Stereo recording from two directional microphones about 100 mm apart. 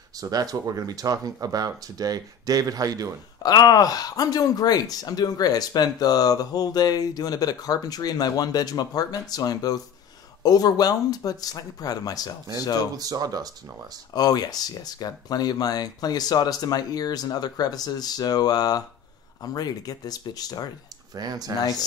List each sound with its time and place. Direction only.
0.2 s speech: 35° right (ahead or behind)
3.4 s speech: 40° left (ahead or behind)
12.9 s speech: 40° right (ahead or behind)
14.1 s speech: 40° left (ahead or behind)
21.1 s speech: 40° right (ahead or behind)